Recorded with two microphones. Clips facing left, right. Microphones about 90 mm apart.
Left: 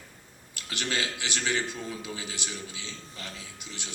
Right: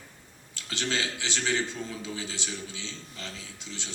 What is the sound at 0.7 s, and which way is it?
A man's voice, 15° left (ahead or behind).